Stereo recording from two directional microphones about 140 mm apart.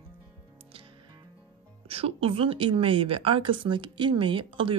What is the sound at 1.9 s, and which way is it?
Speech, 45° right (ahead or behind).